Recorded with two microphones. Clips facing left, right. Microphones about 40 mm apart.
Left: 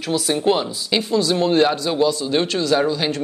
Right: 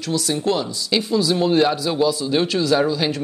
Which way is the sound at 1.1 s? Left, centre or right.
Centre.